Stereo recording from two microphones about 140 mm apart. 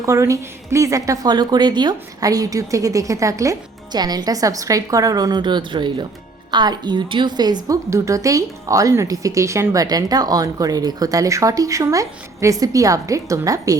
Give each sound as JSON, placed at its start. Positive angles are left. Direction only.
{"t": 0.0, "sound": "a woman's voice", "side_deg": -20}